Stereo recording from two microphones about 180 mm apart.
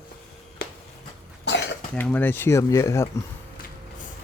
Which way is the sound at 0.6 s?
65° left (ahead or behind).